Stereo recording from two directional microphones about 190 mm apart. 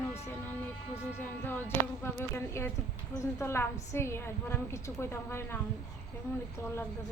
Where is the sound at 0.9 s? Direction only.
10° left (ahead or behind).